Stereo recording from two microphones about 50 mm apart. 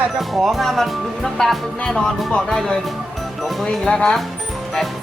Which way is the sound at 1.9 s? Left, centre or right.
Centre.